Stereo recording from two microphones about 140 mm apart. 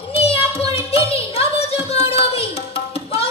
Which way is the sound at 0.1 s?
45° left (ahead or behind).